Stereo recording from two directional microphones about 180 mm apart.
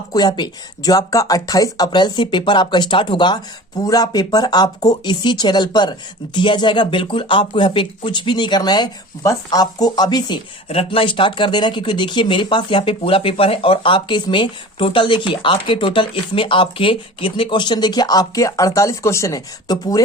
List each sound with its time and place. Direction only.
0.1 s speech: 25° left (ahead or behind)